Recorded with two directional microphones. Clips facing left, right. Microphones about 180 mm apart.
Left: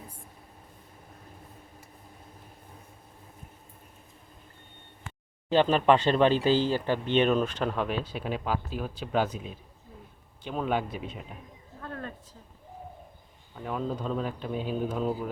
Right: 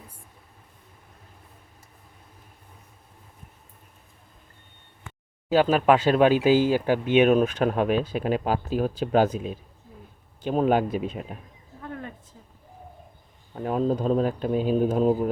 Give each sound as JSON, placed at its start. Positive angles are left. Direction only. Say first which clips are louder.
{"t": 5.5, "sound": "speech", "louder": "right 3 dB", "side_deg": -5}
{"t": 7.6, "sound": "speech", "louder": "right 7 dB", "side_deg": -50}
{"t": 10.4, "sound": "speech", "louder": "right 8 dB", "side_deg": -40}
{"t": 11.8, "sound": "a sound", "louder": "right 2 dB", "side_deg": -15}
{"t": 13.6, "sound": "speech", "louder": "right 8 dB", "side_deg": -40}